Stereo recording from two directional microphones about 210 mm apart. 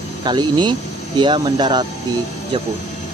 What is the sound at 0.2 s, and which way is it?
Speech, 20° right (ahead or behind).